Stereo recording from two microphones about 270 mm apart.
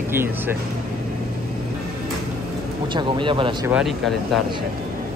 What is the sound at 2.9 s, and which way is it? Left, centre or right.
Speech, centre.